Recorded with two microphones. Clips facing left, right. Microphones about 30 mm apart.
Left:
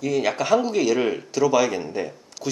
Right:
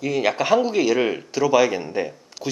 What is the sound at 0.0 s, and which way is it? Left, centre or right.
Speech, centre.